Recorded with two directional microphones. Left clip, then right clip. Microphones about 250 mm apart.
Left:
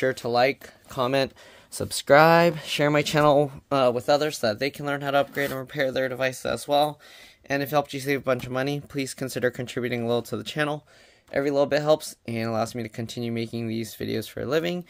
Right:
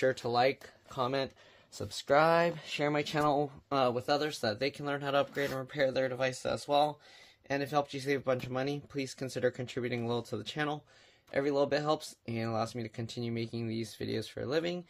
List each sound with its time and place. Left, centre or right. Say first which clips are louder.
0.0 s speech: left 6 dB; left